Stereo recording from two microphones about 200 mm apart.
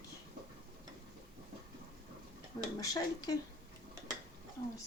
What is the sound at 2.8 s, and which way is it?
Speech, 20° left (ahead or behind).